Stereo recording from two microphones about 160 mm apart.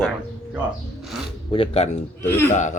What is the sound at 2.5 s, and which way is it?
Speech, 50° left (ahead or behind).